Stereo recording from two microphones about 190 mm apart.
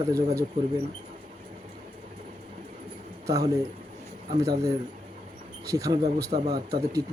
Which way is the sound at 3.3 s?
15° right (ahead or behind).